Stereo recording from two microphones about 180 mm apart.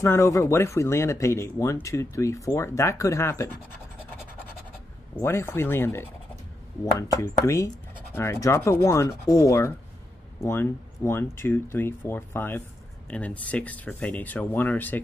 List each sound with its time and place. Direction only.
0.0 s speech: 15° left (ahead or behind)
5.2 s speech: 15° left (ahead or behind)